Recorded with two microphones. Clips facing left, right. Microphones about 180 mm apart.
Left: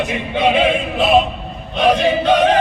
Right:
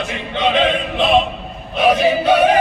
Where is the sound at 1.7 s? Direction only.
5° right (ahead or behind).